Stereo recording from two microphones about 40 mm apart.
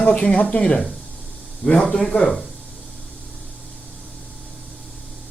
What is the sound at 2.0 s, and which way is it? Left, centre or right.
Speech, centre.